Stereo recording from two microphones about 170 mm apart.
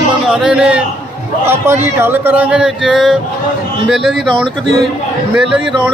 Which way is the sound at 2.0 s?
10° right (ahead or behind).